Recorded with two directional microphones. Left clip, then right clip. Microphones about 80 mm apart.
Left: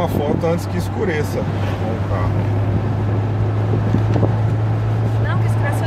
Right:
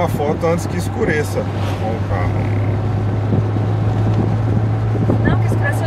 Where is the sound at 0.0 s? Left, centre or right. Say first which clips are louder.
Right 2 dB; right.